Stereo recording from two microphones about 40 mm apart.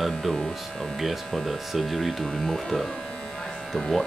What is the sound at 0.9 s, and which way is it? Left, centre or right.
Speech, centre.